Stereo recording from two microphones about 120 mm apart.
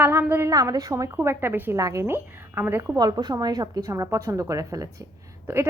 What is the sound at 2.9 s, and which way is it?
A woman's voice, 35° right (ahead or behind).